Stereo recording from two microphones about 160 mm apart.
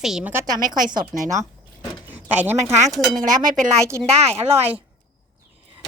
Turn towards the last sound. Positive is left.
turn(degrees=-40)  # may be behind; listen again after turning